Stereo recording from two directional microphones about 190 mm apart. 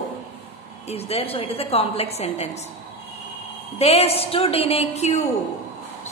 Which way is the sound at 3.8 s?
35° left (ahead or behind).